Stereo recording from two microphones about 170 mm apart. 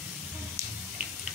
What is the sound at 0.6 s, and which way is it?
Water, 15° right (ahead or behind).